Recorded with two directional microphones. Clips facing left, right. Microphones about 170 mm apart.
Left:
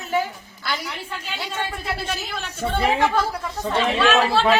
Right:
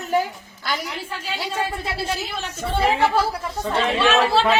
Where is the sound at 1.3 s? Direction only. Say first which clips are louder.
Right 4 dB; 35° right (ahead or behind).